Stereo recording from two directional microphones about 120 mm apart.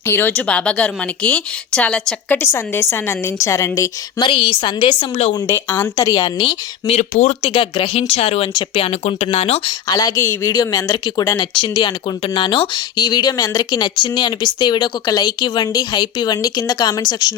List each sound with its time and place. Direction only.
0.0 s speech: 20° left (ahead or behind)
2.4 s a woman's voice: 20° left (ahead or behind)
4.2 s speech: 45° left (ahead or behind)
5.3 s a woman's voice: 25° left (ahead or behind)
6.4 s a woman's voice: 55° left (ahead or behind)
7.1 s speech: 75° left (ahead or behind)
7.4 s a woman's voice: 45° left (ahead or behind)
8.5 s a woman's voice: 45° left (ahead or behind)
8.9 s speech: 60° left (ahead or behind)
9.6 s speech: 35° left (ahead or behind)